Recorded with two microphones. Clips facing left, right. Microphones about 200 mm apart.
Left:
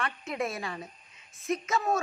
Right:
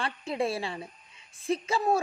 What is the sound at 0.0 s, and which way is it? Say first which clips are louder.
A woman's voice: right 3 dB; 30° right (ahead or behind).